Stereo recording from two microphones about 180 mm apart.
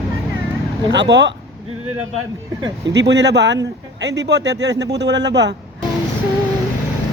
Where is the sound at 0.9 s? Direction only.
75° right (ahead or behind).